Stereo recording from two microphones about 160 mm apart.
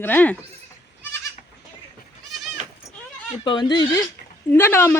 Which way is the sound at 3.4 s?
30° left (ahead or behind).